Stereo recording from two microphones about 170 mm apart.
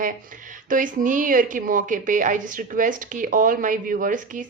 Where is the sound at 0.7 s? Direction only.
50° right (ahead or behind).